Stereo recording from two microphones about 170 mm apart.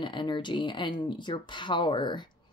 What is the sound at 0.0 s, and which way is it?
Speech, 25° left (ahead or behind).